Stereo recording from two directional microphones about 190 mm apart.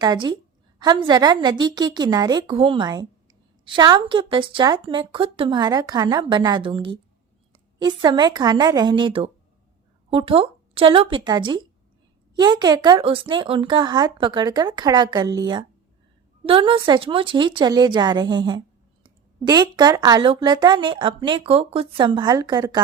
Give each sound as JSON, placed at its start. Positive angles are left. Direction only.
{"t": 0.0, "sound": "speech", "side_deg": -25}